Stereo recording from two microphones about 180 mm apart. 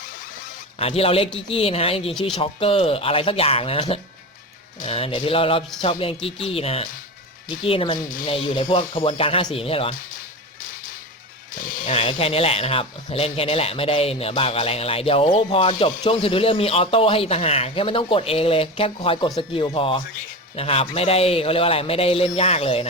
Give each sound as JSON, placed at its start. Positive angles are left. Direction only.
{"t": 0.8, "sound": "speech", "side_deg": 35}
{"t": 10.6, "sound": "music", "side_deg": 50}
{"t": 11.5, "sound": "speech", "side_deg": 50}